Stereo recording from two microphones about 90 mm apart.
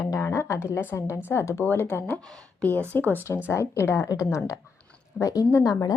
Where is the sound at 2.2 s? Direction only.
5° left (ahead or behind).